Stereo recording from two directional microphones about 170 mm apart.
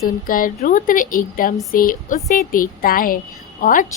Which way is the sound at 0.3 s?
55° left (ahead or behind).